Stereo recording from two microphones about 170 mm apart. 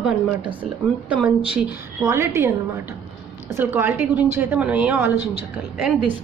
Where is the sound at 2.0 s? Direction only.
15° right (ahead or behind).